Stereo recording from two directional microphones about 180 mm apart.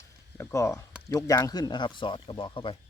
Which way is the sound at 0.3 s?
15° left (ahead or behind).